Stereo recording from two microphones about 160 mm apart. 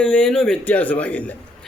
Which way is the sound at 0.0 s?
5° left (ahead or behind).